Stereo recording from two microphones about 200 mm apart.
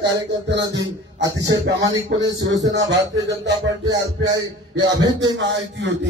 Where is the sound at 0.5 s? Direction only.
60° right (ahead or behind).